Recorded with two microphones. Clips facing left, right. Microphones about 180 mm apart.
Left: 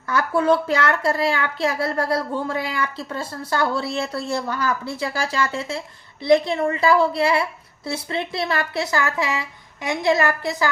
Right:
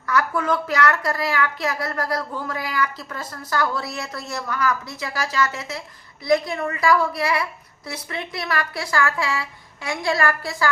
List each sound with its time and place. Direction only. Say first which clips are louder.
0.1 s a woman's voice: left 3 dB; 30° left (ahead or behind)